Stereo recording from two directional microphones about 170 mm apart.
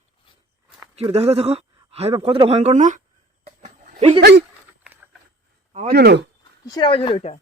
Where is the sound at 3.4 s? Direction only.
45° right (ahead or behind).